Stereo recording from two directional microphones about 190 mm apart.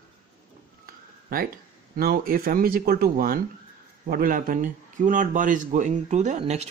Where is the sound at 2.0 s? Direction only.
50° right (ahead or behind).